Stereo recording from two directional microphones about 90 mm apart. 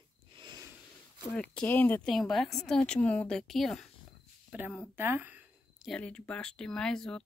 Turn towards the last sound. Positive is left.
turn(degrees=5)  # may be behind; listen again after turning